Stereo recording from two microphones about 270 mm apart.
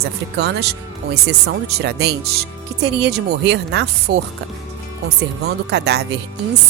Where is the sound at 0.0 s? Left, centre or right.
Right.